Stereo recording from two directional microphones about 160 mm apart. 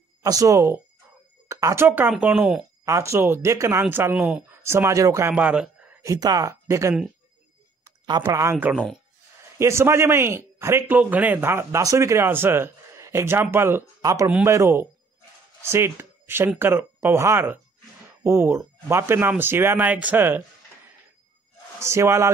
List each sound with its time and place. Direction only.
0.2 s a man's voice: 20° right (ahead or behind); by 2.6 s 5° right (ahead or behind)
2.8 s a man's voice: 20° right (ahead or behind)
5.3 s a man's voice: 10° right (ahead or behind)
6.0 s speech: 25° right (ahead or behind)
8.7 s speech: 5° left (ahead or behind)
9.4 s a man's voice: 15° right (ahead or behind)
21.7 s a man's voice: 15° right (ahead or behind)